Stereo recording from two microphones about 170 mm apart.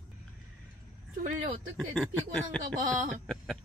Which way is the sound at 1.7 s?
5° left (ahead or behind).